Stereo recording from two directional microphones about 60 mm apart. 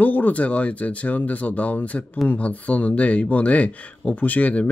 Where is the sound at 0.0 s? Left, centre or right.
Left.